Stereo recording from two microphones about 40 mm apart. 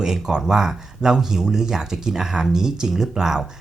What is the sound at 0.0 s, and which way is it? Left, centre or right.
Speech, centre.